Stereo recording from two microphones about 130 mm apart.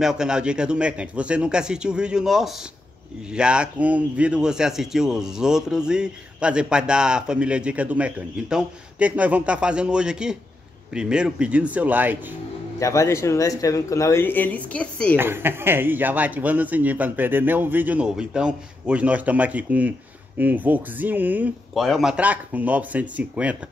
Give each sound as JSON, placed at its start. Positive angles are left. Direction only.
{"t": 0.0, "sound": "a man's voice", "side_deg": -5}
{"t": 12.7, "sound": "speech", "side_deg": 25}
{"t": 15.1, "sound": "a man's voice", "side_deg": -15}
{"t": 21.7, "sound": "a man's voice", "side_deg": 0}